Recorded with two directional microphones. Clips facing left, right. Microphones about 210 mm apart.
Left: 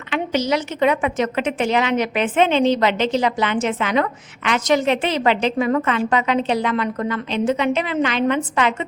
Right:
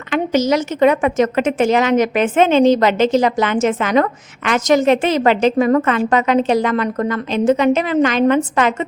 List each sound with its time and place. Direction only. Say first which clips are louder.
0.1 s a woman's voice: right 5 dB; 45° right (ahead or behind)